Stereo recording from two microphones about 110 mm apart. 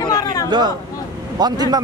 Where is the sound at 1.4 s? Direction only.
40° right (ahead or behind).